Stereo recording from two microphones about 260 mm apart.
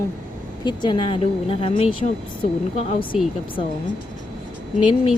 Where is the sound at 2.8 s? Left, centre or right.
Left.